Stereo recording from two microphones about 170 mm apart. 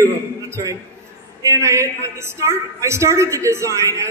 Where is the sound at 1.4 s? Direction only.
15° right (ahead or behind).